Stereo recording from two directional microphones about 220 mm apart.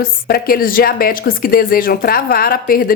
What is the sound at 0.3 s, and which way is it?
A woman's voice, 45° left (ahead or behind).